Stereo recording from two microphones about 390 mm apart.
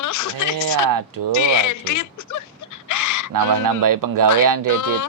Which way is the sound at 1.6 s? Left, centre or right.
Left.